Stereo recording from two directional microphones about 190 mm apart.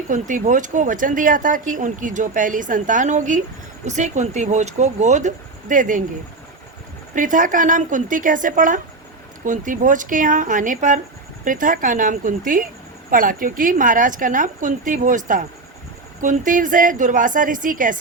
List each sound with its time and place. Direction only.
0.1 s speech: 40° right (ahead or behind)
7.2 s speech: 45° right (ahead or behind)